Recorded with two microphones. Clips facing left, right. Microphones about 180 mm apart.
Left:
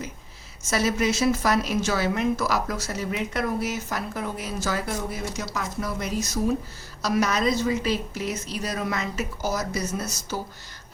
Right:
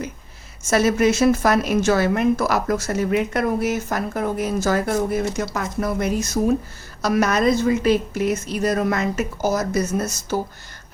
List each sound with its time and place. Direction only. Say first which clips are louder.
0.7 s a woman's voice: right 6 dB; 55° right (ahead or behind)